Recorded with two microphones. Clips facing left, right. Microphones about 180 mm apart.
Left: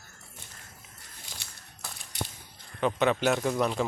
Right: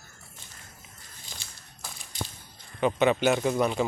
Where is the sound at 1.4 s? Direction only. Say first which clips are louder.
Even; 65° left (ahead or behind).